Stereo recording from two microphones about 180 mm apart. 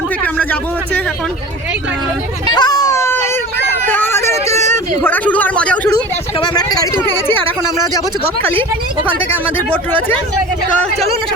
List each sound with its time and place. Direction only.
0.2 s speech: 5° left (ahead or behind)
2.5 s a sound: 20° left (ahead or behind)
4.4 s a sound: 35° right (ahead or behind)
5.0 s speech: 10° left (ahead or behind)
6.4 s speech: 20° left (ahead or behind)
9.6 s speech: 10° left (ahead or behind)